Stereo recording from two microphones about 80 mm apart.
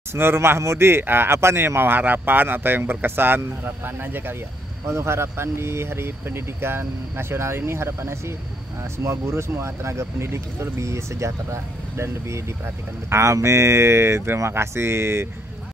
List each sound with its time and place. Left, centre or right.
0.1 s speech: right